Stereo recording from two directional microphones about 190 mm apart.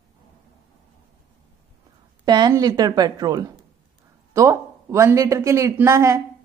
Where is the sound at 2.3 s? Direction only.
20° right (ahead or behind).